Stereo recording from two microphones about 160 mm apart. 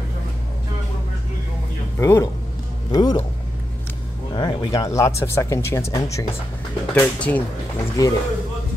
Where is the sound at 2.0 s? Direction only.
15° left (ahead or behind).